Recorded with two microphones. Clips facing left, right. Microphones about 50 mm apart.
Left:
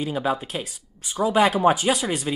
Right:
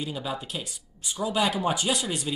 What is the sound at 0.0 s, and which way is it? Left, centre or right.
Speech, left.